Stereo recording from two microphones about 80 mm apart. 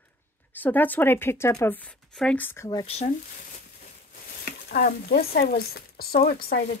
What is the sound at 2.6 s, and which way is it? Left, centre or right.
Speech, left.